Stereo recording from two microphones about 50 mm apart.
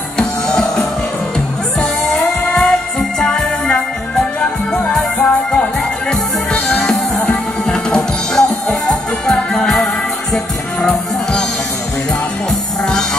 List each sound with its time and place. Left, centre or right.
0.2 s music: centre
5.2 s music: left
6.8 s music: centre
10.8 s music: centre